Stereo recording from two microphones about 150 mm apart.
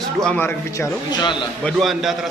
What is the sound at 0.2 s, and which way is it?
Speech, 10° left (ahead or behind).